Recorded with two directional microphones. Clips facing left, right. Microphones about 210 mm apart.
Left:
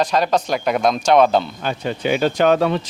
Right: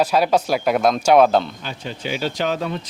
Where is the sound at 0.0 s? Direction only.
10° right (ahead or behind).